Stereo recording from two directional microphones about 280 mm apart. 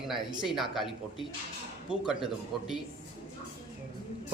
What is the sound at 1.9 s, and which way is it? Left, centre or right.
Speech, centre.